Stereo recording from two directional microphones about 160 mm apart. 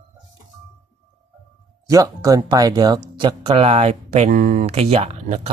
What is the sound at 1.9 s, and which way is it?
Speech, 20° right (ahead or behind).